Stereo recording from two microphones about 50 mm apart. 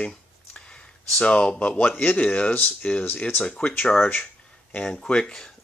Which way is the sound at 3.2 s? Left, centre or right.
Left.